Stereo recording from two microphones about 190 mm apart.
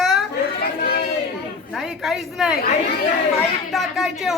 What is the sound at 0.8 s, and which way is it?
Speech, 50° left (ahead or behind).